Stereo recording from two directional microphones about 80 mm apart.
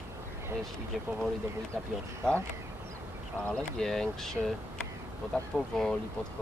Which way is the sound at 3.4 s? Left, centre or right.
Centre.